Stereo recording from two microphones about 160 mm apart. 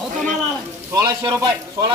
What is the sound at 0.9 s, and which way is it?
A man's voice, 20° right (ahead or behind).